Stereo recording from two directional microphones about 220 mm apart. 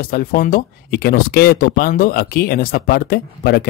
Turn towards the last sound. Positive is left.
turn(degrees=45)  # may be behind; listen again after turning